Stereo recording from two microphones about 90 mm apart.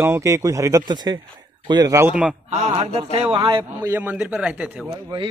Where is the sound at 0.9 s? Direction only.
50° right (ahead or behind).